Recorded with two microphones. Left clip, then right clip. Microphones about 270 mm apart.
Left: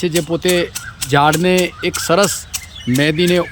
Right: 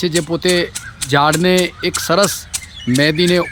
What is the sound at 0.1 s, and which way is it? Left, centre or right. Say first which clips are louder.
Speech: even; centre.